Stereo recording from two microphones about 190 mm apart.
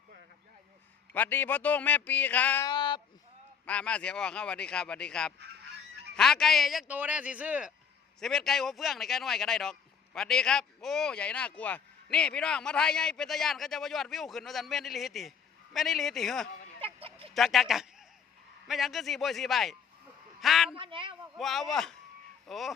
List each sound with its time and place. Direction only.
1.1 s speech: 10° left (ahead or behind)
2.7 s a sound: 25° left (ahead or behind)
3.7 s speech: 5° left (ahead or behind)
16.8 s a sound: 30° right (ahead or behind)
17.3 s speech: centre (ahead or behind)
20.7 s a woman's voice: 25° right (ahead or behind)
21.3 s speech: centre (ahead or behind)